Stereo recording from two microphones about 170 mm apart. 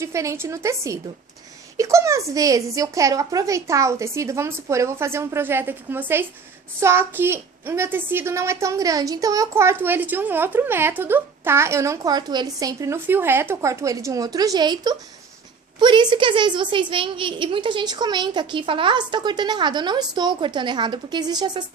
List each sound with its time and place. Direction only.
0.0 s a woman's voice: 15° right (ahead or behind)